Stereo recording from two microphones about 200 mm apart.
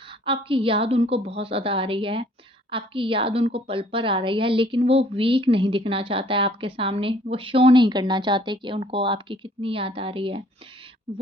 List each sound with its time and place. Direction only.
0.3 s a woman's voice: 25° right (ahead or behind)